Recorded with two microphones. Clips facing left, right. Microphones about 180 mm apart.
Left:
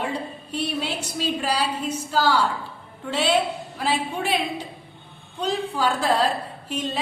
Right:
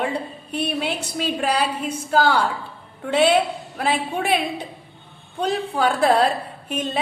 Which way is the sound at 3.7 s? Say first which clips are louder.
Right 3 dB; 60° right (ahead or behind).